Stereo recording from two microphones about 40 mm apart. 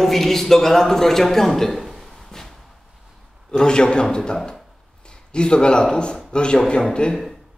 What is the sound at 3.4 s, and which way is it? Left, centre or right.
A man's voice, left.